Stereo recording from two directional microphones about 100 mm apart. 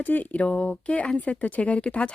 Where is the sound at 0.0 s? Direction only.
15° left (ahead or behind).